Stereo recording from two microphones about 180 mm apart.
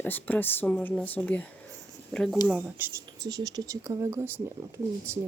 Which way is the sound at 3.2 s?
20° right (ahead or behind).